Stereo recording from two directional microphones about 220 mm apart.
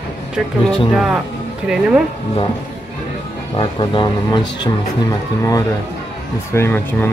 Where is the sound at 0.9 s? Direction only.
Centre (ahead or behind).